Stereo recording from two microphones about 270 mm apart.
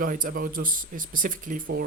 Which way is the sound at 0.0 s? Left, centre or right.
Right.